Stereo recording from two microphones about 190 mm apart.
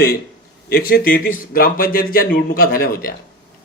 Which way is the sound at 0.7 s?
50° left (ahead or behind).